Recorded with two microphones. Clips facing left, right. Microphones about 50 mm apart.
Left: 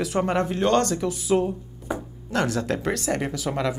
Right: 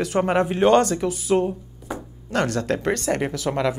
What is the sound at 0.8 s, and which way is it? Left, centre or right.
Speech, centre.